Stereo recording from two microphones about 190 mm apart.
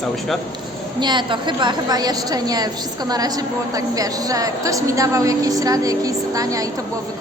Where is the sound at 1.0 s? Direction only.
25° right (ahead or behind).